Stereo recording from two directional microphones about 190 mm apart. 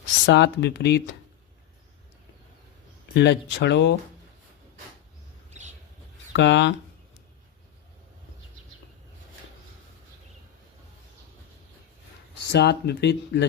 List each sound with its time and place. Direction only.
0.3 s speech: 65° left (ahead or behind)
3.2 s speech: 65° left (ahead or behind)
5.5 s a sound: 40° right (ahead or behind)
6.3 s speech: 70° left (ahead or behind)
12.5 s speech: 60° left (ahead or behind)